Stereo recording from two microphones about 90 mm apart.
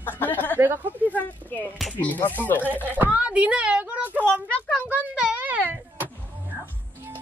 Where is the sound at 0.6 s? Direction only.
20° right (ahead or behind).